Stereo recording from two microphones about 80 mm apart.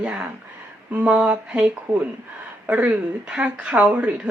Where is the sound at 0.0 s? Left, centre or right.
Centre.